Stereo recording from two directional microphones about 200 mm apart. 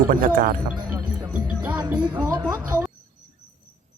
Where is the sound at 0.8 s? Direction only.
20° right (ahead or behind).